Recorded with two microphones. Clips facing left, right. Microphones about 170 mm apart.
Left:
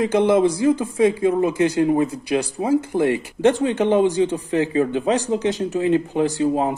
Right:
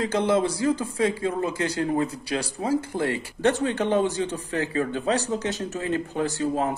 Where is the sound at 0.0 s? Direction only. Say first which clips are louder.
Left 6 dB; 20° left (ahead or behind).